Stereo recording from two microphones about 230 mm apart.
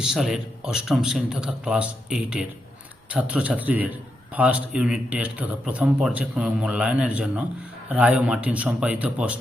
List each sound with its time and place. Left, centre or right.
0.0 s speech: centre